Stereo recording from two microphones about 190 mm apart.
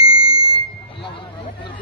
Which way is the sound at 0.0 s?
30° left (ahead or behind).